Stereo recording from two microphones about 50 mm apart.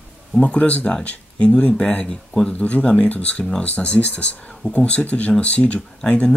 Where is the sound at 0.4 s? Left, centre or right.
Left.